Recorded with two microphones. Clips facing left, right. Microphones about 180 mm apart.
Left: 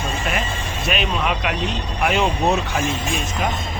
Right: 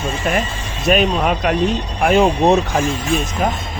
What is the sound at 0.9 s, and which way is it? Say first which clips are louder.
Speech: right 7 dB; 40° right (ahead or behind).